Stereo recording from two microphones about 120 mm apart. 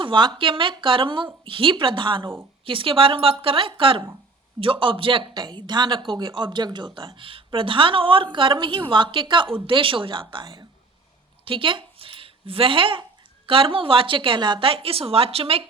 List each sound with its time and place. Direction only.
0.0 s speech: 40° right (ahead or behind)
11.4 s a sound: 45° right (ahead or behind)
13.5 s speech: 50° right (ahead or behind)